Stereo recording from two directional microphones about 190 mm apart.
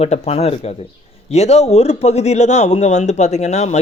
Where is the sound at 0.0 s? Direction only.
35° left (ahead or behind).